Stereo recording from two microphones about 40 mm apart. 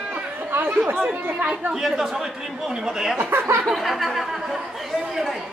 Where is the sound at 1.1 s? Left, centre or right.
Right.